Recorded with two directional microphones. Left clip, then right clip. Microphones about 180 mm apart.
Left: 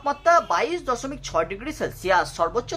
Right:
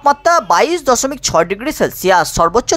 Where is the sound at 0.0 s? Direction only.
45° right (ahead or behind).